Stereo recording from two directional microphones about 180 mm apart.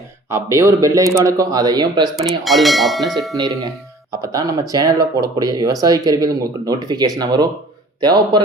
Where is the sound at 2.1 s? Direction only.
Centre (ahead or behind).